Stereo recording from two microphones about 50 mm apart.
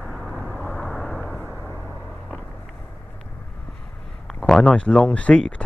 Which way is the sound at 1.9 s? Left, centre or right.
Centre.